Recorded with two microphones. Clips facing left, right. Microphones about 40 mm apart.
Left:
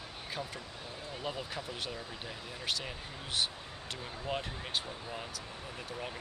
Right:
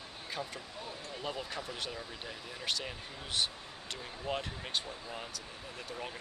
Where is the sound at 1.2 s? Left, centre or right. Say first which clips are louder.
Even; centre.